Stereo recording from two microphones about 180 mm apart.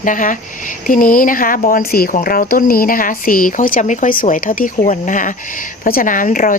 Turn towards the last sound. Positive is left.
turn(degrees=50)  # may be behind; listen again after turning